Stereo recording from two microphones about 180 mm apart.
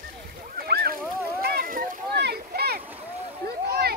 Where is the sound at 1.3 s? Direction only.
55° right (ahead or behind).